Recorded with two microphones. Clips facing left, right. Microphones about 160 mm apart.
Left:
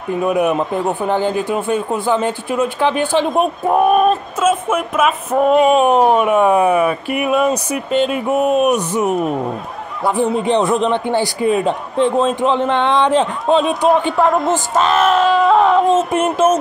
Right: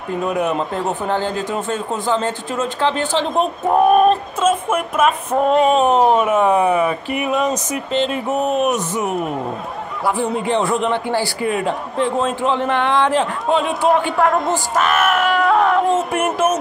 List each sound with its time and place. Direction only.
0.2 s speech: 15° left (ahead or behind)
10.0 s a man's voice: 20° left (ahead or behind)